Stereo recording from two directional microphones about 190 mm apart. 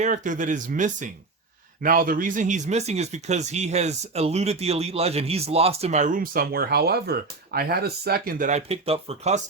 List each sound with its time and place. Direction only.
0.0 s speech: 40° right (ahead or behind)